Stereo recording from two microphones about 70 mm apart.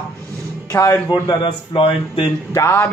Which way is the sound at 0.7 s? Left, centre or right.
Left.